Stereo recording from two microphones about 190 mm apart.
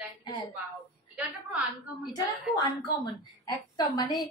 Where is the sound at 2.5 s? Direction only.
20° left (ahead or behind).